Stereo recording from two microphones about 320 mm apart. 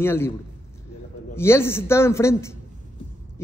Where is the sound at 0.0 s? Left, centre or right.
Centre.